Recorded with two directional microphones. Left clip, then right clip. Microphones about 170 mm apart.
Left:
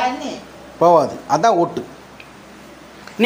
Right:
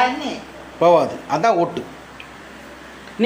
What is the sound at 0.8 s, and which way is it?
A man's voice, 20° left (ahead or behind).